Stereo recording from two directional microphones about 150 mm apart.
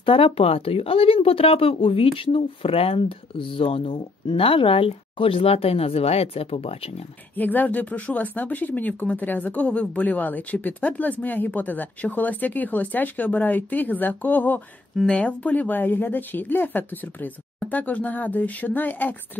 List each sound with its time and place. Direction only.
0.0 s speech: 40° left (ahead or behind)
7.3 s speech: 10° left (ahead or behind)